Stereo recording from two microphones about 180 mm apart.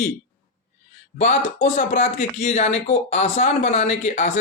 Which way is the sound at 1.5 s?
40° left (ahead or behind).